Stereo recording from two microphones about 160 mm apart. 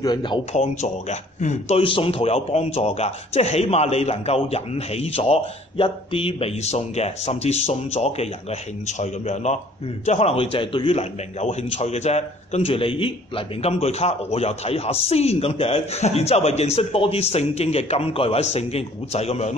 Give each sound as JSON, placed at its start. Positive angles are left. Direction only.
{"t": 0.0, "sound": "a man's voice", "side_deg": 30}
{"t": 0.5, "sound": "speech", "side_deg": 45}
{"t": 1.8, "sound": "a man's voice", "side_deg": 35}